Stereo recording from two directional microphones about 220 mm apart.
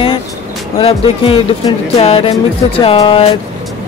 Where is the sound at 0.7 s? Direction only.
25° left (ahead or behind).